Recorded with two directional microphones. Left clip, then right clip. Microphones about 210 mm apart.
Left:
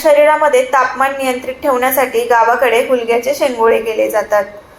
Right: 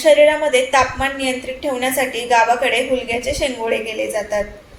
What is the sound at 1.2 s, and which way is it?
A woman's voice, 35° left (ahead or behind).